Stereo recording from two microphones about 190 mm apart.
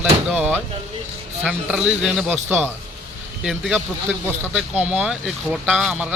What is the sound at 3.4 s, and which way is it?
Speech, 5° right (ahead or behind).